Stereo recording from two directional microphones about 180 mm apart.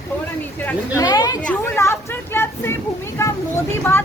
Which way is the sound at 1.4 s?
10° left (ahead or behind).